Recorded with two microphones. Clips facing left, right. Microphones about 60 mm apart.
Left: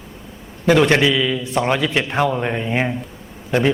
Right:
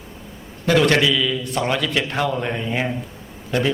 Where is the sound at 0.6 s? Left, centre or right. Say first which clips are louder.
Left 2 dB; centre.